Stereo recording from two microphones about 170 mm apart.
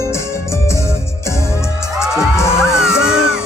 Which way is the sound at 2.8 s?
5° right (ahead or behind).